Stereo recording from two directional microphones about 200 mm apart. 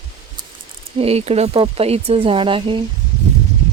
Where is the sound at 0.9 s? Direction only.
30° right (ahead or behind).